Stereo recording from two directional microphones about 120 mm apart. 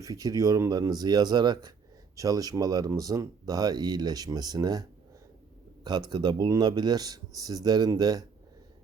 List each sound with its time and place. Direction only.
0.0 s speech: 30° right (ahead or behind)
6.1 s speech: 35° right (ahead or behind)